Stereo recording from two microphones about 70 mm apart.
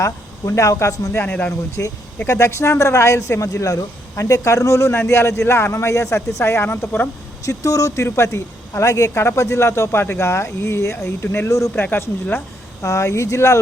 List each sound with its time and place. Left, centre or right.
0.0 s speech: left
1.2 s speech: left
1.8 s speech: left
7.4 s speech: left
12.8 s speech: left